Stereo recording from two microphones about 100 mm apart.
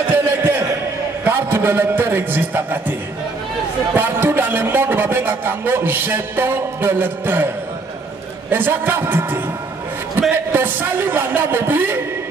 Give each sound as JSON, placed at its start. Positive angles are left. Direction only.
{"t": 0.1, "sound": "a sound", "side_deg": -20}
{"t": 1.2, "sound": "a man's voice", "side_deg": -20}
{"t": 3.9, "sound": "a man's voice", "side_deg": -20}
{"t": 8.5, "sound": "a man's voice", "side_deg": -20}
{"t": 10.5, "sound": "a man's voice", "side_deg": -20}